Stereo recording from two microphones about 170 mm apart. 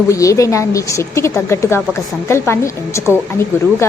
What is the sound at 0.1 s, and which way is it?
A woman's voice, 20° left (ahead or behind).